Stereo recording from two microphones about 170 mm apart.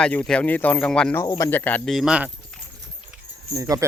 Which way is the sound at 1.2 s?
20° left (ahead or behind).